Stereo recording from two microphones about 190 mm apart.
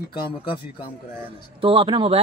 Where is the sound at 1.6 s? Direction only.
30° right (ahead or behind).